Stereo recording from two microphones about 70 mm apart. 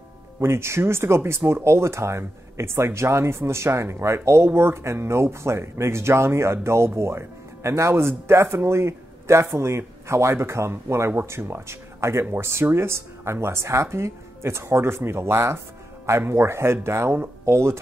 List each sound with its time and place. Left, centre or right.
0.4 s speech: right